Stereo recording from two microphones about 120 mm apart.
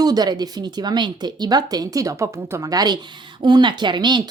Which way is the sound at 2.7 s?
35° right (ahead or behind).